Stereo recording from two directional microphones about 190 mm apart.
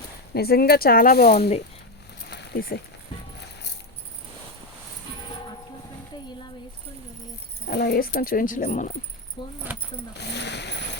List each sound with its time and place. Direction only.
0.3 s speech: 55° left (ahead or behind)
2.2 s a sound: 60° left (ahead or behind)
7.7 s speech: 60° left (ahead or behind); by 8.9 s 45° left (ahead or behind)
9.4 s speech: 25° left (ahead or behind)
10.2 s speech: 60° left (ahead or behind)